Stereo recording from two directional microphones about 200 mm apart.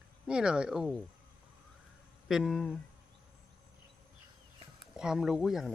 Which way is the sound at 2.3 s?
Centre (ahead or behind).